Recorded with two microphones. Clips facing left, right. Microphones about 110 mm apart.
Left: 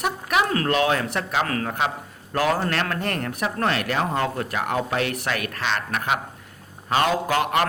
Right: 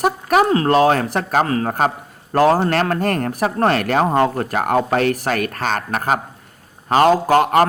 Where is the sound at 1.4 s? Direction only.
30° right (ahead or behind).